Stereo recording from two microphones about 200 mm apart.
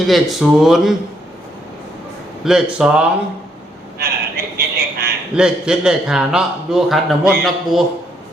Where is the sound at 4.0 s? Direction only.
50° right (ahead or behind).